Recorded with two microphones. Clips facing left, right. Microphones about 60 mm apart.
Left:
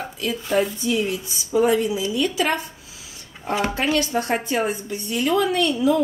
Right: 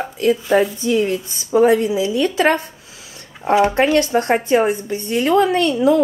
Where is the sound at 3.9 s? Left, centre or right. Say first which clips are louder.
Right 6 dB; right.